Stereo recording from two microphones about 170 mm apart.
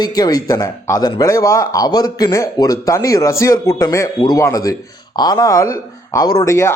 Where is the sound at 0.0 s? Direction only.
20° left (ahead or behind).